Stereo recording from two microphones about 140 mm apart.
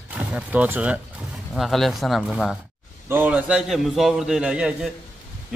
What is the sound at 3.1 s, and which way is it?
A man's voice, 10° right (ahead or behind).